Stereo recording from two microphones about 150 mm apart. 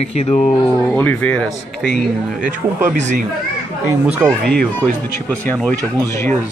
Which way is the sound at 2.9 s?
55° right (ahead or behind).